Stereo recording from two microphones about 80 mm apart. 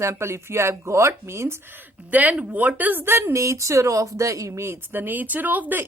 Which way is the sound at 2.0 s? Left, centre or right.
Right.